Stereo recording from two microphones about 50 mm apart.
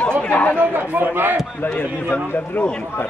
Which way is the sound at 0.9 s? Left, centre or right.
Right.